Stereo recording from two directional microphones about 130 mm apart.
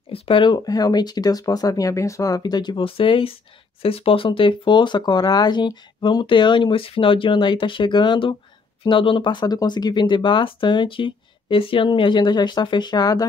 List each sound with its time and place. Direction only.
0.1 s speech: 45° left (ahead or behind)